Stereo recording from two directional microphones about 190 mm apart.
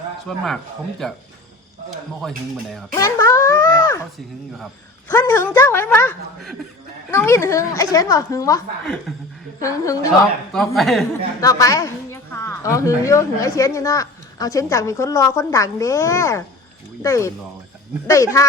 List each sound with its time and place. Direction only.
0.3 s speech: centre (ahead or behind)
2.9 s a woman's voice: 15° left (ahead or behind)
4.5 s speech: centre (ahead or behind)
5.1 s a sound: 20° left (ahead or behind)
7.1 s a woman's voice: 15° left (ahead or behind)
9.1 s speech: centre (ahead or behind)
9.6 s a woman's voice: 15° left (ahead or behind)
10.8 s speech: centre (ahead or behind)
11.3 s a woman's voice: 15° left (ahead or behind)